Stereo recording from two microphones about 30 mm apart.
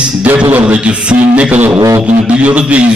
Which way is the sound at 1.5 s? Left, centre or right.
Right.